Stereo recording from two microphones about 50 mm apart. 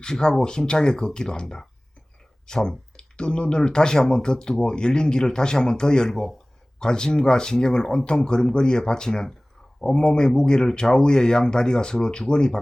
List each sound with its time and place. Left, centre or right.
0.0 s speech: centre